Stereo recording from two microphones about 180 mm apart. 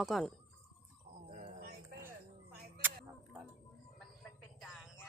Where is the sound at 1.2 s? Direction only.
40° right (ahead or behind).